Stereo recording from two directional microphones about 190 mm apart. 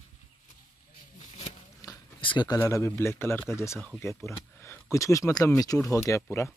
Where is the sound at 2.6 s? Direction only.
15° left (ahead or behind).